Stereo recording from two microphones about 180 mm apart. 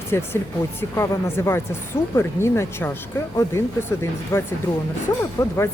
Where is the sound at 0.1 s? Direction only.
15° left (ahead or behind).